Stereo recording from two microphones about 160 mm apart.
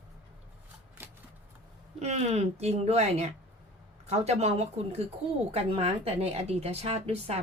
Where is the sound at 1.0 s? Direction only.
15° right (ahead or behind).